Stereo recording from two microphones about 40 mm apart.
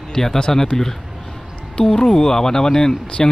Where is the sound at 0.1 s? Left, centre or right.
Centre.